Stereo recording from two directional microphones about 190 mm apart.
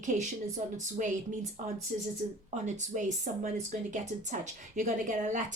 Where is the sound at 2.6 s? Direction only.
40° right (ahead or behind).